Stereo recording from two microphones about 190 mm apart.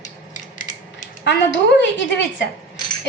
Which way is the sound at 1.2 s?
65° left (ahead or behind).